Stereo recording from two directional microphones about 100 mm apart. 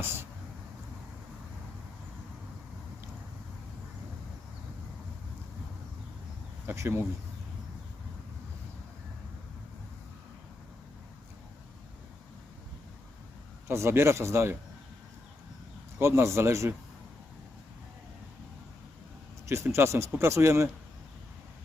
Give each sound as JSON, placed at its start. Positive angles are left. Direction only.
{"t": 0.0, "sound": "a sound", "side_deg": -25}
{"t": 6.7, "sound": "speech", "side_deg": -25}
{"t": 13.7, "sound": "speech", "side_deg": -25}
{"t": 16.0, "sound": "speech", "side_deg": -25}
{"t": 19.5, "sound": "speech", "side_deg": -25}